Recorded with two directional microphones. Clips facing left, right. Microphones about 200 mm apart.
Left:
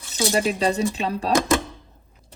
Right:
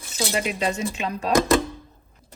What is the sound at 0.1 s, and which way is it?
Speech, 35° left (ahead or behind).